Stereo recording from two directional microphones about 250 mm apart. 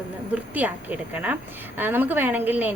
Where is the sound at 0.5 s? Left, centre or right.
Centre.